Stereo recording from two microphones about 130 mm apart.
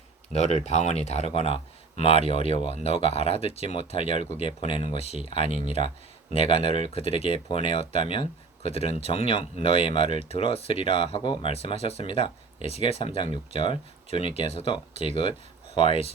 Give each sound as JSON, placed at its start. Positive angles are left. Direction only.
{"t": 0.3, "sound": "speech", "side_deg": 55}
{"t": 11.5, "sound": "speech", "side_deg": 50}